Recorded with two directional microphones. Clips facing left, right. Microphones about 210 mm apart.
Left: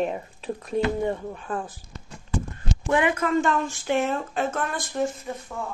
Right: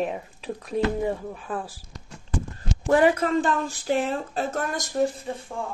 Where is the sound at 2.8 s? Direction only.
35° right (ahead or behind).